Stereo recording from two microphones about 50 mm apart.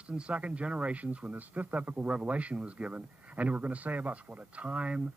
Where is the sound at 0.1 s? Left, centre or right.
Right.